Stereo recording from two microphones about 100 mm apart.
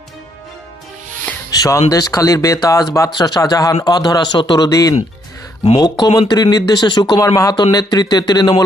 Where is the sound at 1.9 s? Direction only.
35° left (ahead or behind).